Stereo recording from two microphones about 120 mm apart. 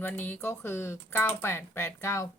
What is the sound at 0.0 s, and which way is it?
A woman's voice, 15° left (ahead or behind).